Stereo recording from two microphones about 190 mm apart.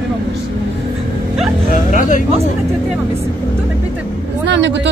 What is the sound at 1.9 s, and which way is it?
Speech, 45° left (ahead or behind).